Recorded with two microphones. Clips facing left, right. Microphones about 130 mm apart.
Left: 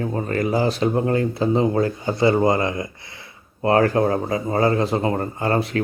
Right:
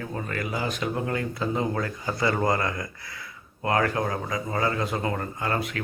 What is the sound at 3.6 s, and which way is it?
Speech, 35° left (ahead or behind).